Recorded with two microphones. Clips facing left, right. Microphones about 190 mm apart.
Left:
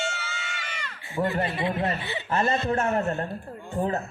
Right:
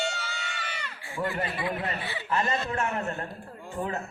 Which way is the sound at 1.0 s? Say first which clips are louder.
Left 5 dB; 25° left (ahead or behind).